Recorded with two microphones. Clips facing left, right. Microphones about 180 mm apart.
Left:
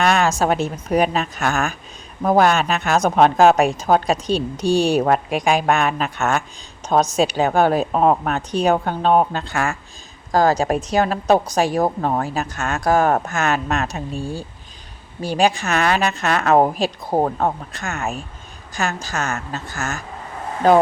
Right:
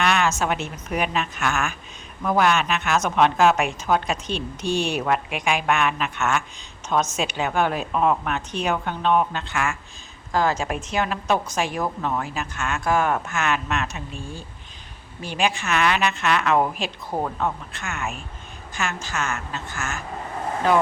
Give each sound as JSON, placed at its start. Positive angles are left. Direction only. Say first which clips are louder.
{"t": 0.0, "sound": "speech", "louder": "left 4 dB", "side_deg": 35}